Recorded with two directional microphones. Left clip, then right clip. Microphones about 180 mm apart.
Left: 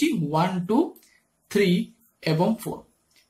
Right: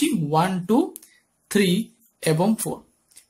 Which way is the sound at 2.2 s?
35° right (ahead or behind).